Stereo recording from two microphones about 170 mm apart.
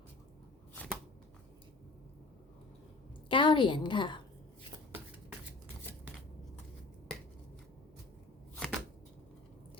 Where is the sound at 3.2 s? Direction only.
30° left (ahead or behind).